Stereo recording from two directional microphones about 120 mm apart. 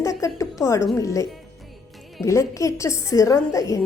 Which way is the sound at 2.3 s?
25° left (ahead or behind).